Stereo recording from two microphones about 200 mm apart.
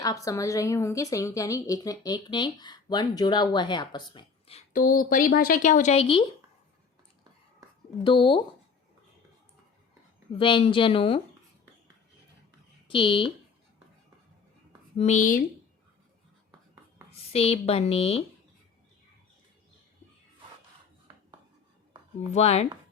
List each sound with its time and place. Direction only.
0.0 s a woman's voice: 15° left (ahead or behind)
4.7 s speech: 45° left (ahead or behind); by 6.2 s 30° left (ahead or behind)
8.0 s a woman's voice: 25° left (ahead or behind)
10.3 s a woman's voice: 25° left (ahead or behind)
12.9 s a woman's voice: 25° left (ahead or behind)
14.9 s speech: 35° left (ahead or behind)
17.1 s speech: 30° left (ahead or behind)
22.3 s speech: 30° left (ahead or behind)